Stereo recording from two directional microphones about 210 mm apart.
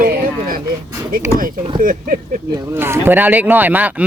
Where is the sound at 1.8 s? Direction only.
40° right (ahead or behind).